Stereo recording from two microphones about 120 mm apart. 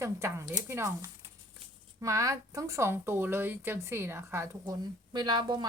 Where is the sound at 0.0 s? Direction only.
25° right (ahead or behind).